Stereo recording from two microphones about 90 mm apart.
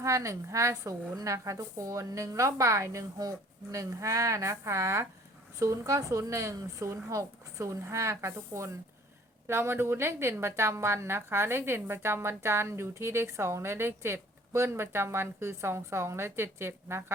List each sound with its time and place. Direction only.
0.0 s a woman's voice: 35° right (ahead or behind)